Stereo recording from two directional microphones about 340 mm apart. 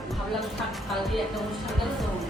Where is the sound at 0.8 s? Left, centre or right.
Centre.